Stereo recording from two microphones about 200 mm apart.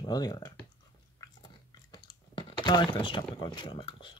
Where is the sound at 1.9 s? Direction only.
25° left (ahead or behind).